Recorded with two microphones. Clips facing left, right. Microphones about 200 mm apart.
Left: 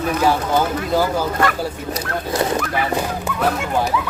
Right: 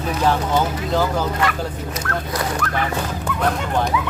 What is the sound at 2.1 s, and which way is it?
Dog, 20° left (ahead or behind).